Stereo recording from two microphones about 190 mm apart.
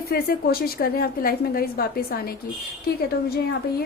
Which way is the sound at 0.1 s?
55° left (ahead or behind).